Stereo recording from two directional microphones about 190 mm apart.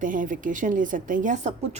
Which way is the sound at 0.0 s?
45° right (ahead or behind).